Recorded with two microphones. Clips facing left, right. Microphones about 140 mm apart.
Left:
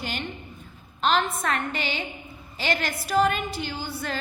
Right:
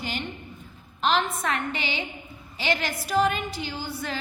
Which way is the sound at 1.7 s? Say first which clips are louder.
Left 1 dB; 45° left (ahead or behind).